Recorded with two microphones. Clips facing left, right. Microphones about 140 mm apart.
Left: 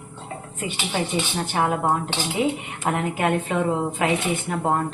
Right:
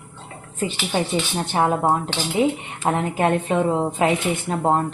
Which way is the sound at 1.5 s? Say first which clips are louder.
Right 3 dB; 25° right (ahead or behind).